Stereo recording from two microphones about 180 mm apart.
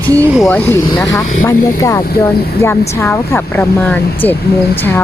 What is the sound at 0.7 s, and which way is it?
Speech, 15° left (ahead or behind).